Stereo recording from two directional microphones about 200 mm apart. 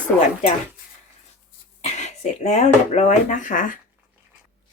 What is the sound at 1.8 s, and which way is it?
Speech, 35° left (ahead or behind).